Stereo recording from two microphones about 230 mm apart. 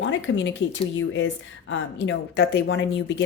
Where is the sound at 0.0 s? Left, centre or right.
Left.